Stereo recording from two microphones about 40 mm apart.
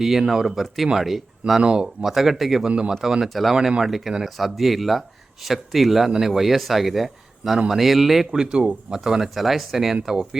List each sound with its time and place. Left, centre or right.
0.0 s speech: centre
1.6 s speech: right
2.0 s speech: centre
2.6 s speech: right
3.0 s speech: centre
3.2 s speech: centre
3.5 s speech: centre
3.8 s speech: centre
8.3 s speech: centre
9.3 s speech: centre